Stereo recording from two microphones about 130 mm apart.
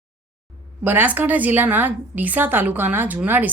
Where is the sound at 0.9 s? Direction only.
15° right (ahead or behind).